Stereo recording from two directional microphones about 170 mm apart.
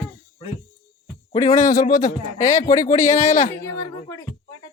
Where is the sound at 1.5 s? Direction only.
45° left (ahead or behind).